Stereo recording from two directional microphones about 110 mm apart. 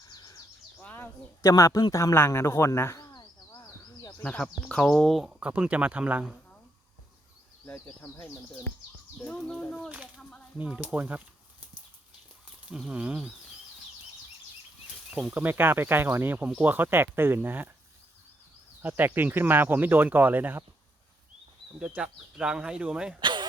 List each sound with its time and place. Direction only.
0.1 s bird: 35° left (ahead or behind)
0.8 s speech: 15° left (ahead or behind)
3.1 s a sound: 35° left (ahead or behind)
4.2 s speech: 10° left (ahead or behind); by 6.2 s 15° right (ahead or behind)
9.2 s speech: 10° left (ahead or behind)
10.6 s speech: 10° right (ahead or behind)
12.7 s speech: 5° right (ahead or behind)
15.1 s speech: 15° right (ahead or behind)
18.8 s speech: 15° right (ahead or behind)
21.8 s speech: 10° right (ahead or behind)
23.2 s a sound: 45° right (ahead or behind)